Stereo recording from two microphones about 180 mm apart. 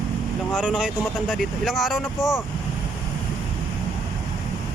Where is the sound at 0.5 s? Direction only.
5° right (ahead or behind).